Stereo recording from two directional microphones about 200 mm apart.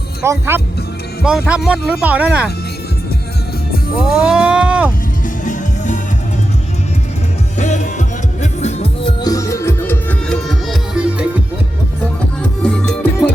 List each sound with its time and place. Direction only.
0.3 s speech: 10° right (ahead or behind)
4.0 s livestock: 5° right (ahead or behind)
5.5 s music: 40° left (ahead or behind)
7.6 s music: 35° left (ahead or behind)
9.2 s music: 15° left (ahead or behind); by 11.3 s 5° right (ahead or behind)
12.4 s music: 5° left (ahead or behind)